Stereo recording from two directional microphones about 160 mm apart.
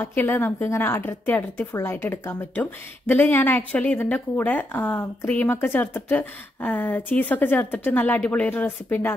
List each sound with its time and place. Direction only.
0.0 s a woman's voice: 15° left (ahead or behind)